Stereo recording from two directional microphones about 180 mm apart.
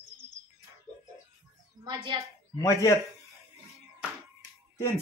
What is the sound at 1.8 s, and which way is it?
Speech, 25° right (ahead or behind).